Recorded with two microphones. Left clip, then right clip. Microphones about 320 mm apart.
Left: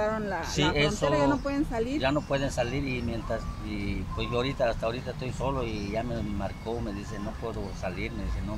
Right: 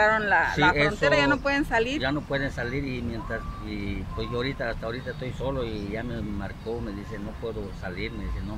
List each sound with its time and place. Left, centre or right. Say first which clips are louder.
0.0 s a sound: right 9 dB; right
0.6 s speech: right 4 dB; centre
1.1 s speech: right 4 dB; right
2.0 s speech: even; centre